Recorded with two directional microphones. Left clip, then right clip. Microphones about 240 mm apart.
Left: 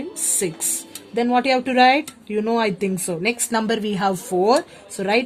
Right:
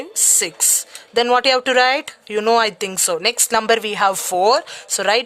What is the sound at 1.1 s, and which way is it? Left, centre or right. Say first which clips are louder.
Speech: right 4 dB; right.